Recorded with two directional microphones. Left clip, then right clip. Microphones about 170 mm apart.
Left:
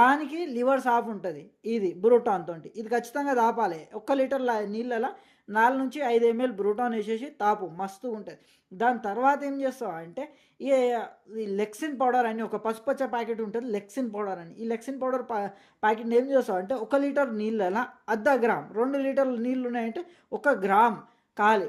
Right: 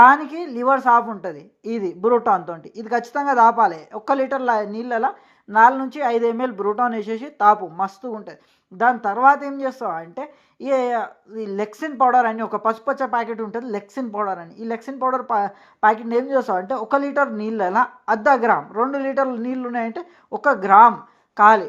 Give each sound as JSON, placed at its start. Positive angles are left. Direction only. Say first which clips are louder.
{"t": 0.0, "sound": "a woman's voice", "louder": "right 10 dB", "side_deg": 0}